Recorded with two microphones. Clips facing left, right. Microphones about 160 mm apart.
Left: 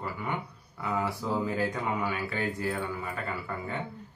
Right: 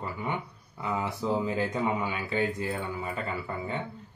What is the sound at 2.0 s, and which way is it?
Speech, 20° right (ahead or behind).